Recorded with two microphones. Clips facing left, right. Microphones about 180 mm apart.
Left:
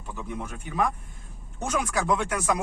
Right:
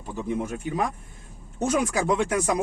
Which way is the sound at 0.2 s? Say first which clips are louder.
Right 8 dB; 40° right (ahead or behind).